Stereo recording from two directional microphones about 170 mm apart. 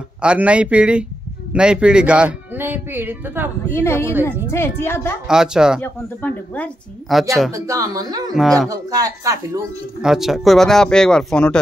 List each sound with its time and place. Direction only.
0.2 s speech: 5° right (ahead or behind)
3.7 s speech: 15° left (ahead or behind)
5.2 s speech: 5° right (ahead or behind)
5.8 s speech: 10° left (ahead or behind)
7.5 s speech: 20° right (ahead or behind)
10.0 s speech: centre (ahead or behind)